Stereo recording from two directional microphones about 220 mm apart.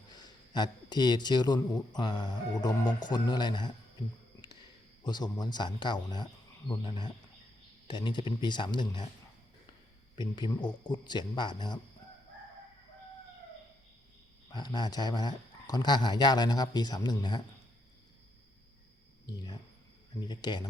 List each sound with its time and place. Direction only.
0.1 s speech: 15° left (ahead or behind)
5.0 s speech: 20° left (ahead or behind)
10.2 s speech: 20° left (ahead or behind)
14.5 s speech: 20° left (ahead or behind)
19.2 s speech: 15° left (ahead or behind)